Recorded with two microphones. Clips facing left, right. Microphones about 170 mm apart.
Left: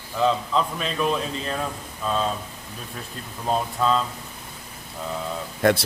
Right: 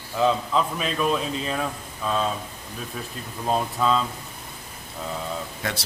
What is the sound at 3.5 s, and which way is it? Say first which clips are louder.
Speech: even; centre (ahead or behind).